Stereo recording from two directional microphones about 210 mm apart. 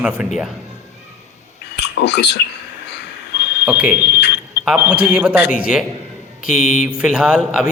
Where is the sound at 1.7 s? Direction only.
55° left (ahead or behind).